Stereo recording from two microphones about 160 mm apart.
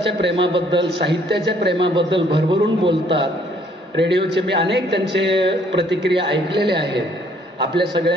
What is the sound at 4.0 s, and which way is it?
A man's voice, 90° right.